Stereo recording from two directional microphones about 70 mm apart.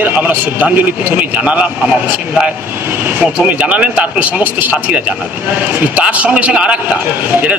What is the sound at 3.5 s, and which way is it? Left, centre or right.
A man's voice, centre.